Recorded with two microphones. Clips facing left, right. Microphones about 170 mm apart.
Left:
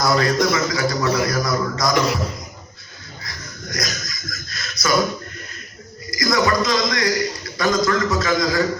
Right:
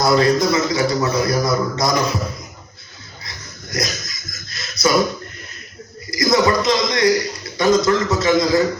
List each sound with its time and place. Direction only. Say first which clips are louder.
0.0 s a man's voice: right 3 dB; 25° right (ahead or behind)
3.2 s a sound: left 3 dB; 25° right (ahead or behind)
6.1 s a man's voice: right 3 dB; 25° right (ahead or behind)